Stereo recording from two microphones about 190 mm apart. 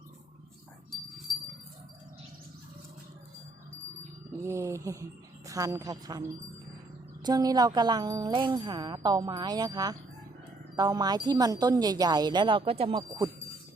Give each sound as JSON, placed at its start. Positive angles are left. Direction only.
{"t": 4.4, "sound": "speech", "side_deg": -15}
{"t": 7.3, "sound": "speech", "side_deg": -20}